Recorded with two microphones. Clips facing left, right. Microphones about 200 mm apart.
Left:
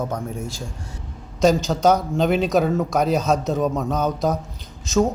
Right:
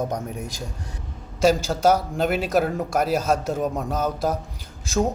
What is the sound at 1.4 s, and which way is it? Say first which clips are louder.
A man's voice: left 2 dB; 5° right (ahead or behind).